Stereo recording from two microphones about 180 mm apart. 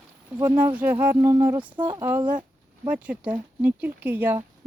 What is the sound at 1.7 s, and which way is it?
Speech, 25° right (ahead or behind).